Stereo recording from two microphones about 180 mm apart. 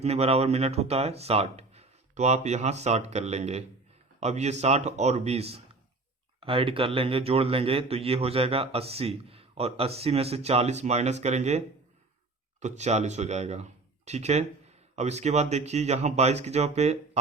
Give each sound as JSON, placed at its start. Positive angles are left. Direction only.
{"t": 0.0, "sound": "a man's voice", "side_deg": -35}